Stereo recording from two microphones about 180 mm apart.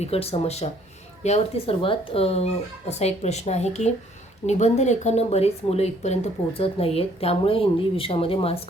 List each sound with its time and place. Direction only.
0.0 s speech: 35° left (ahead or behind)